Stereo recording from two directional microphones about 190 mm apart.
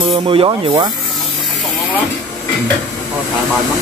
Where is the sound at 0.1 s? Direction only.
30° right (ahead or behind).